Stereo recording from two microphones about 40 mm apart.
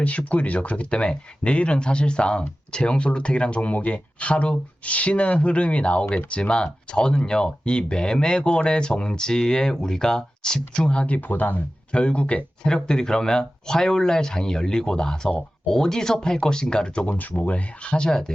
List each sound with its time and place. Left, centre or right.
0.0 s speech: left
11.3 s speech: left
11.9 s speech: left
12.6 s speech: centre
17.1 s speech: left; by 18.3 s centre